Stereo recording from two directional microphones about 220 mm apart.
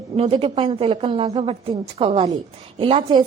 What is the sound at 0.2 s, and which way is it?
A woman's voice, 25° right (ahead or behind).